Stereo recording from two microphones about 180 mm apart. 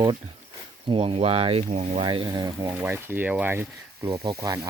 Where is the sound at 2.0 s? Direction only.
25° right (ahead or behind).